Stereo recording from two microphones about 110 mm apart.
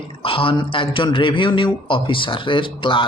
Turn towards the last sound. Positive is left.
turn(degrees=50)  # may be behind; listen again after turning